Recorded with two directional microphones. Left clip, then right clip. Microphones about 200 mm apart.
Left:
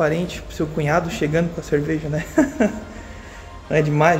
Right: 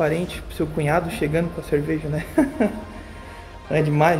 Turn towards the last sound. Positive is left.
turn(degrees=0)  # may be behind; listen again after turning